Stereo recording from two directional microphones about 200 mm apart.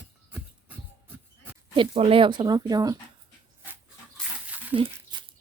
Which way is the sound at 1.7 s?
30° right (ahead or behind).